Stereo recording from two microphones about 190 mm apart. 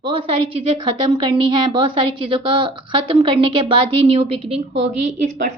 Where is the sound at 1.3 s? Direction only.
25° right (ahead or behind).